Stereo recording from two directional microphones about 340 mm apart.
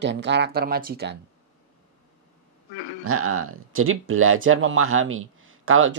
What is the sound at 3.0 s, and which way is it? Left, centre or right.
Speech, right.